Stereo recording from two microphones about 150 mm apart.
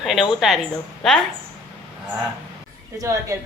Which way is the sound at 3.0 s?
20° right (ahead or behind).